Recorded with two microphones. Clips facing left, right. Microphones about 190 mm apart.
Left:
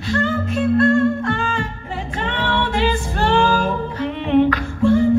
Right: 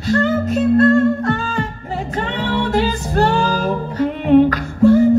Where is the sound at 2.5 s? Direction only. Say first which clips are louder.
Right 2 dB; 40° right (ahead or behind).